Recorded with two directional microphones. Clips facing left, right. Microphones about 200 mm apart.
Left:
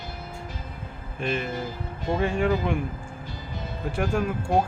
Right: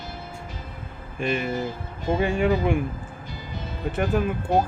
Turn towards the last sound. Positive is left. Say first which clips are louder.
# right 2 dB
turn(degrees=-5)  # may be behind; listen again after turning